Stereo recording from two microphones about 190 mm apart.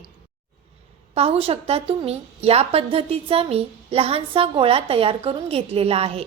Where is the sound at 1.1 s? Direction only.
30° right (ahead or behind).